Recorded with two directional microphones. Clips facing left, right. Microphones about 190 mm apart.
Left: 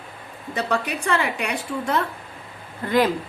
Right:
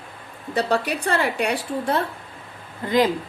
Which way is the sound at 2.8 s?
20° right (ahead or behind).